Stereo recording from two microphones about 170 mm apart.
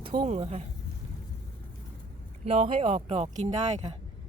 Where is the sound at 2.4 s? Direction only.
35° right (ahead or behind).